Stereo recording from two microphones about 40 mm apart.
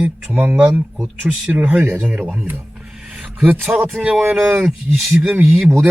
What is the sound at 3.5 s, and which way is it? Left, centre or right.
Speech, right.